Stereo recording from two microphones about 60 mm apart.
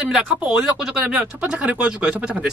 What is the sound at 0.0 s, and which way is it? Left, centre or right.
Speech, centre.